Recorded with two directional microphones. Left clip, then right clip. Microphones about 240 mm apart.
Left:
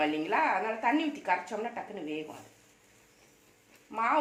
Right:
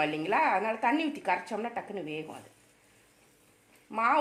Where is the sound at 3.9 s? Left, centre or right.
Right.